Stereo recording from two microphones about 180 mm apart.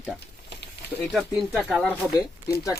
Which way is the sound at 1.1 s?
Centre (ahead or behind).